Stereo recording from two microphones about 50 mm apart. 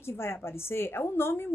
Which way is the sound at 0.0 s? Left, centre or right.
Left.